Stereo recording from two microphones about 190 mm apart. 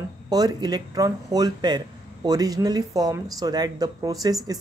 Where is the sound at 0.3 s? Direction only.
20° right (ahead or behind).